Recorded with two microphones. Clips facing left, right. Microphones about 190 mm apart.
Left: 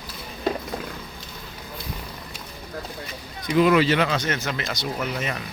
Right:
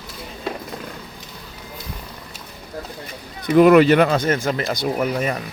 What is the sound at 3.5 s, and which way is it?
Speech, 55° right (ahead or behind).